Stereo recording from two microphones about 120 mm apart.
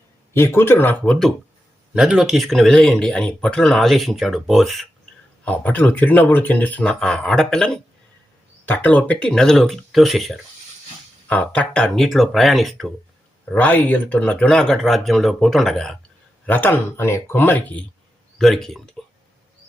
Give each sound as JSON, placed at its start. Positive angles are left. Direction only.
{"t": 0.3, "sound": "speech", "side_deg": 20}
{"t": 1.0, "sound": "speech", "side_deg": 5}
{"t": 1.9, "sound": "speech", "side_deg": -5}
{"t": 5.5, "sound": "speech", "side_deg": 15}
{"t": 8.6, "sound": "speech", "side_deg": 15}
{"t": 11.3, "sound": "speech", "side_deg": 10}
{"t": 13.4, "sound": "speech", "side_deg": 15}
{"t": 16.5, "sound": "speech", "side_deg": 15}
{"t": 18.3, "sound": "speech", "side_deg": 0}